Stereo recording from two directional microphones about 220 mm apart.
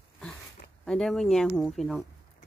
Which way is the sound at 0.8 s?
5° left (ahead or behind).